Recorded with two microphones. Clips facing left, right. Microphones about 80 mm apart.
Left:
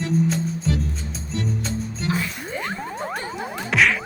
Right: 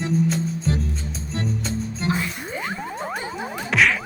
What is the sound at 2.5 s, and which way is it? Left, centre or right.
Music, centre.